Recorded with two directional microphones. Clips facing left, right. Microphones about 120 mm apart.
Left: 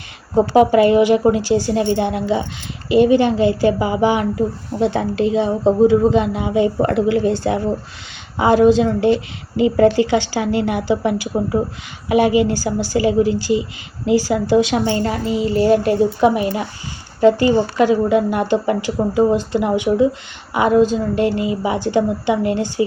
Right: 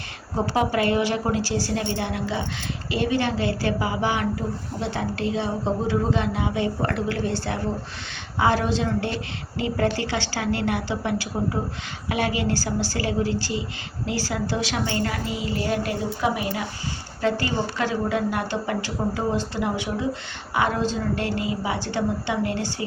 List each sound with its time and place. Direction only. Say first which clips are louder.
0.5 s a woman's voice: left 10 dB; 20° left (ahead or behind)